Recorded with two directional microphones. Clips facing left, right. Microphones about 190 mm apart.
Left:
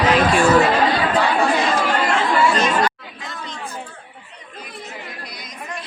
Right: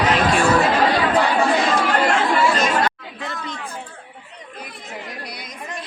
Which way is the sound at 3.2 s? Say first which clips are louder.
Right 3 dB; 65° right (ahead or behind).